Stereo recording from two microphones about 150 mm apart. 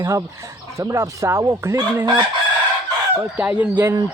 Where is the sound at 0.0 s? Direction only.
20° right (ahead or behind).